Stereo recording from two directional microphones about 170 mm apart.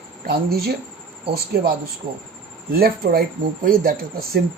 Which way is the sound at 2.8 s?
60° right (ahead or behind).